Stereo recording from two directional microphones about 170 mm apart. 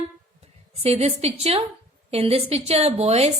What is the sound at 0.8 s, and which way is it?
A woman's voice, 40° right (ahead or behind).